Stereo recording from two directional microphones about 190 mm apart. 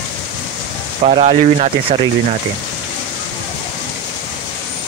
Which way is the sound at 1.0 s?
35° right (ahead or behind).